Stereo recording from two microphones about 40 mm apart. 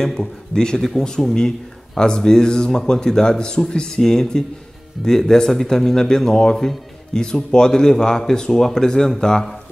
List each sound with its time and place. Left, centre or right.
0.0 s speech: centre